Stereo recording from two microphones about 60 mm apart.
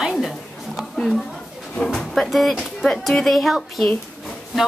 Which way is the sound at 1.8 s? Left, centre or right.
Centre.